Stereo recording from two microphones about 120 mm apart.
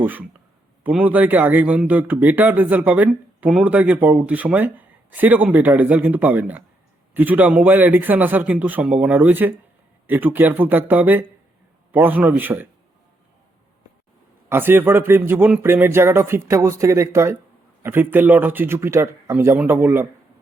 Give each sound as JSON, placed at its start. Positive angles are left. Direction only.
{"t": 0.0, "sound": "speech", "side_deg": -15}
{"t": 14.5, "sound": "a man's voice", "side_deg": -20}